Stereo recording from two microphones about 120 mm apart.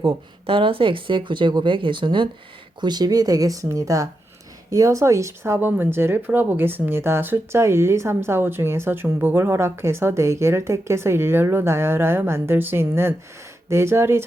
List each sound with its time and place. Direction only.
0.4 s speech: 50° right (ahead or behind); by 14.3 s 20° right (ahead or behind)